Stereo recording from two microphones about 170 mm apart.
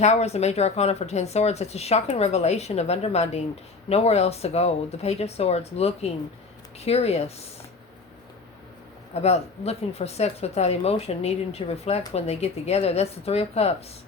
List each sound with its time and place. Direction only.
0.0 s speech: 40° left (ahead or behind)
9.2 s speech: 40° left (ahead or behind)